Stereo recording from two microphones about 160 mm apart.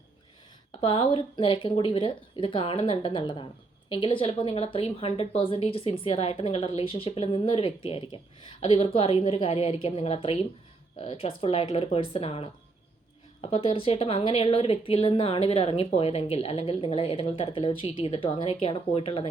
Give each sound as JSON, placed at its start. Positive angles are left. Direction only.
{"t": 0.8, "sound": "a woman's voice", "side_deg": 35}